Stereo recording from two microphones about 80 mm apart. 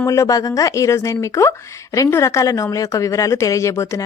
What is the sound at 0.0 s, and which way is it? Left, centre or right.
Speech, left.